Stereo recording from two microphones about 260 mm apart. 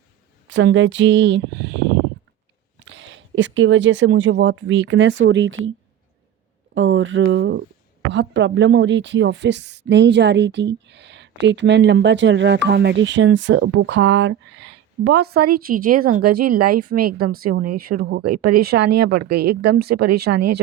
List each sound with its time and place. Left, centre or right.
0.5 s speech: right
6.7 s speech: right